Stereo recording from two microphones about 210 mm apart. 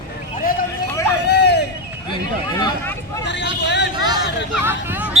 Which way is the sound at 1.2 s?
50° left (ahead or behind).